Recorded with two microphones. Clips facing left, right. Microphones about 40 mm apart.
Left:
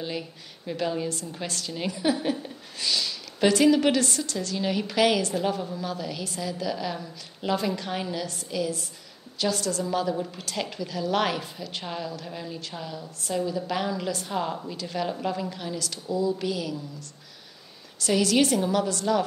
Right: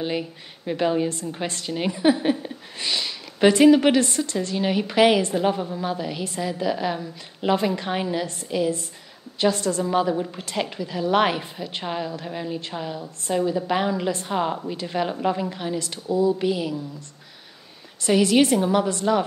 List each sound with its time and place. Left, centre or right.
0.0 s a woman's voice: right
18.0 s a woman's voice: right